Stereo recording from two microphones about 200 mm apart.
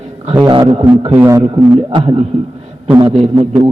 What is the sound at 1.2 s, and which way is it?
A man's voice, 15° right (ahead or behind).